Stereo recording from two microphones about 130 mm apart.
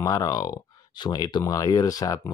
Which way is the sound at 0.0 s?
30° left (ahead or behind).